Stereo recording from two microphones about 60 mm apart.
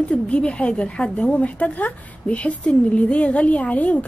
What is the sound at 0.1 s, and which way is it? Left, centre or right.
A woman's voice, centre.